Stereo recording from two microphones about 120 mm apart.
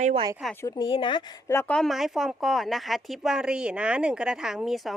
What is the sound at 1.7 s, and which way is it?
Speech, 5° left (ahead or behind).